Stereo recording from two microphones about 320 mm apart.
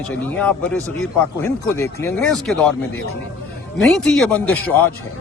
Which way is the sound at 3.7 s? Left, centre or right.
Centre.